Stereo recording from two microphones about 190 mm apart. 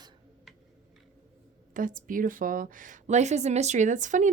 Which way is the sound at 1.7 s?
45° right (ahead or behind).